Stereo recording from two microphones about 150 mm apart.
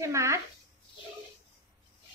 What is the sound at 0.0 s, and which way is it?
Speech, 20° right (ahead or behind).